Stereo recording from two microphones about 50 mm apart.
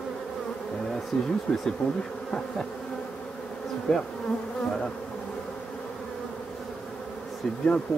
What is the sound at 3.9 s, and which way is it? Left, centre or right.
Speech, centre.